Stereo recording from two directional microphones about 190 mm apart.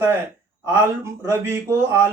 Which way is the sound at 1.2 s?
15° right (ahead or behind).